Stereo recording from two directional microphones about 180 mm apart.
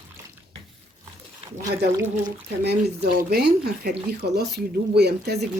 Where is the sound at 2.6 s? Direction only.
65° right (ahead or behind).